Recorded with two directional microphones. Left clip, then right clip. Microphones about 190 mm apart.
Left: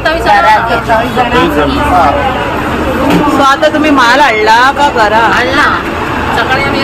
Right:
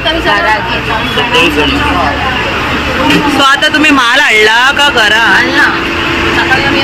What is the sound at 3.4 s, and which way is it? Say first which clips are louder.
Speech: right 1 dB; 10° right (ahead or behind).